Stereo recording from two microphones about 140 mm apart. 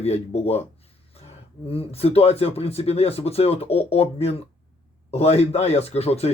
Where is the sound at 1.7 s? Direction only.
45° left (ahead or behind).